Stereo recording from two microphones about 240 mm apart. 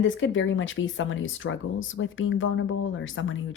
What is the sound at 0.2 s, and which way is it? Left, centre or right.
Speech, left.